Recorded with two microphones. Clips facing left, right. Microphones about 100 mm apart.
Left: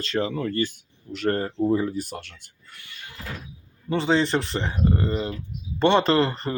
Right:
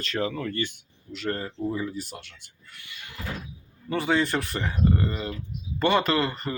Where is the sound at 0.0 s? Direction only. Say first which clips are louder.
Left 3 dB; 30° left (ahead or behind).